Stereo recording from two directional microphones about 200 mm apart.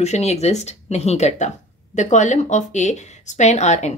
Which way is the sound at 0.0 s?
35° left (ahead or behind).